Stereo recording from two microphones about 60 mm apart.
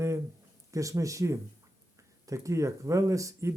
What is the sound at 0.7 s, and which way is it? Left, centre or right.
Speech, right.